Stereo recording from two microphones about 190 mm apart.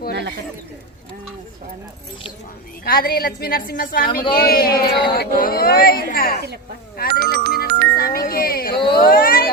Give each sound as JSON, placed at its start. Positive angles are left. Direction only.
{"t": 2.8, "sound": "speech", "side_deg": 50}
{"t": 6.9, "sound": "music", "side_deg": 55}
{"t": 8.9, "sound": "speech", "side_deg": 50}